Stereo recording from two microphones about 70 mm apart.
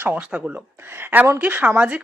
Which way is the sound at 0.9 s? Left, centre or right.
Right.